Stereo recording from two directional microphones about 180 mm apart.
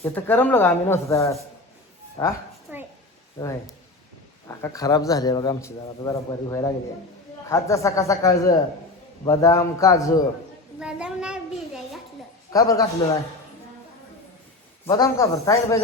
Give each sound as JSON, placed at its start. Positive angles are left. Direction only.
{"t": 0.0, "sound": "a man's voice", "side_deg": 10}
{"t": 2.7, "sound": "a sound", "side_deg": -10}
{"t": 3.4, "sound": "a man's voice", "side_deg": 20}
{"t": 10.8, "sound": "a child's voice", "side_deg": -5}
{"t": 12.5, "sound": "a man's voice", "side_deg": 20}
{"t": 14.8, "sound": "speech", "side_deg": 20}